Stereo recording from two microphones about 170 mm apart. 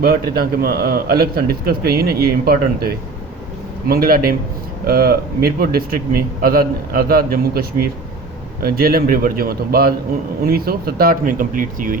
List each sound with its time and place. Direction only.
0.0 s a man's voice: 65° right (ahead or behind)